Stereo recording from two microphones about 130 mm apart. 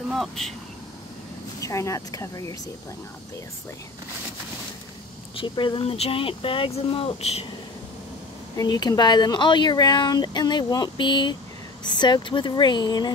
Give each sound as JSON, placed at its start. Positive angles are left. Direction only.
{"t": 0.1, "sound": "speech", "side_deg": 0}
{"t": 1.6, "sound": "speech", "side_deg": 25}
{"t": 5.3, "sound": "speech", "side_deg": 40}
{"t": 8.5, "sound": "speech", "side_deg": 30}